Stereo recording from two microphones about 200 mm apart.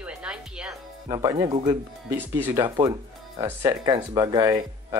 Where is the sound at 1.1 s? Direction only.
15° right (ahead or behind).